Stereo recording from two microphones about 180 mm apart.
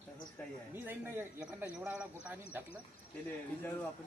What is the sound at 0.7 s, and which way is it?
A man's voice, 10° right (ahead or behind).